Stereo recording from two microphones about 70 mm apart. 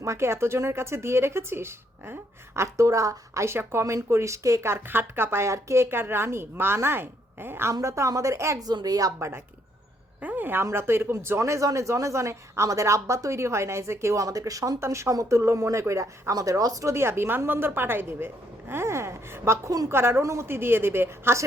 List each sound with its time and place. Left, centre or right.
0.0 s a woman's voice: right
2.6 s a woman's voice: right
7.7 s speech: right
8.6 s speech: right
9.1 s a woman's voice: right
14.8 s speech: right
16.3 s speech: right
16.9 s a woman's voice: right